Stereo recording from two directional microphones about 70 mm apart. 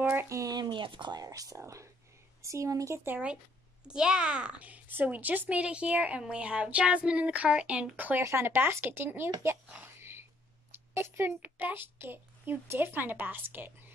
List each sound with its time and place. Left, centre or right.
0.0 s a sound: right
0.3 s speech: right
0.6 s speech: right
3.8 s speech: centre
8.2 s speech: right
11.0 s a child's voice: right